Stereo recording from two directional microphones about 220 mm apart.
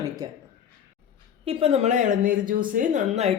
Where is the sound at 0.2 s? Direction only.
15° right (ahead or behind).